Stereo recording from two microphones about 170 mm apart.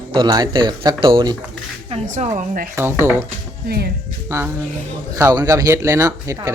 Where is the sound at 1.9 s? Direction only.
45° right (ahead or behind).